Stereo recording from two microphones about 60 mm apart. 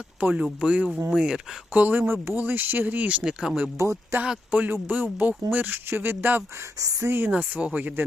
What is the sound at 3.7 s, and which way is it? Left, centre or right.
Speech, right.